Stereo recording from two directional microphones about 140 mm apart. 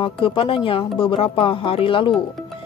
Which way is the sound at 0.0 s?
40° left (ahead or behind).